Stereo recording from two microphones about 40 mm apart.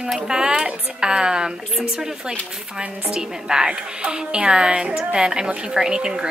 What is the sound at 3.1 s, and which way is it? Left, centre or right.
A woman's voice, centre.